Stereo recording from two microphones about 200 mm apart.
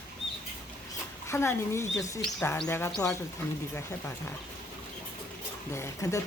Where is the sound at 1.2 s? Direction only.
15° left (ahead or behind).